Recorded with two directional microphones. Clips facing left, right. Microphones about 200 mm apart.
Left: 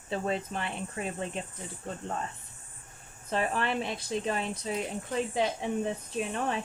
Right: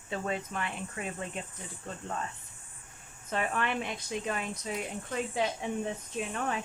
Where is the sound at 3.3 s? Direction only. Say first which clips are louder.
Left 2 dB; 30° left (ahead or behind).